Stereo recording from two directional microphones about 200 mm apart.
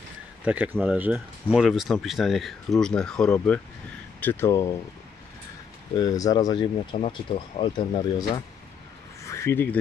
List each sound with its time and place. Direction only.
0.5 s speech: 5° right (ahead or behind); by 4.7 s 15° left (ahead or behind)
5.9 s speech: 20° left (ahead or behind)
9.2 s a sound: 15° left (ahead or behind)